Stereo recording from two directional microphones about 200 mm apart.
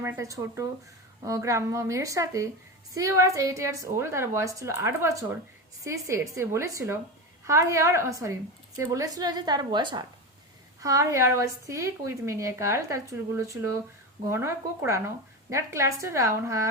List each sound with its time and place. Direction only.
0.0 s a woman's voice: 15° right (ahead or behind)